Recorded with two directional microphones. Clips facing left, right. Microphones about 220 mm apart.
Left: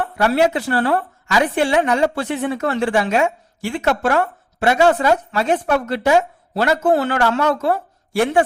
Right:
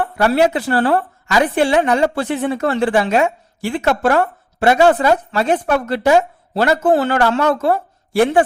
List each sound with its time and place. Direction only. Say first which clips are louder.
0.2 s a woman's voice: right 2 dB; 35° right (ahead or behind)